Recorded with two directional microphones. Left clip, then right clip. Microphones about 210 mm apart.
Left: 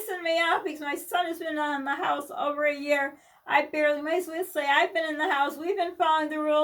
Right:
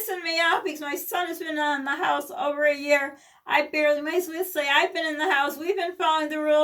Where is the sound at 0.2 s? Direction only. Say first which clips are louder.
Right 1 dB; 5° right (ahead or behind).